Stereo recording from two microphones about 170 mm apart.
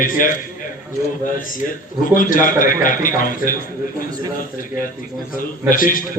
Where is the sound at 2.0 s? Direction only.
55° left (ahead or behind).